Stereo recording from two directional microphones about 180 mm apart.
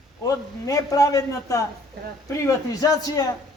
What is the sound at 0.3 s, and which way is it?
A man's voice, 20° left (ahead or behind).